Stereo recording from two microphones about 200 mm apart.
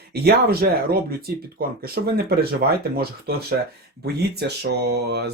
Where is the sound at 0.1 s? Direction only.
50° right (ahead or behind).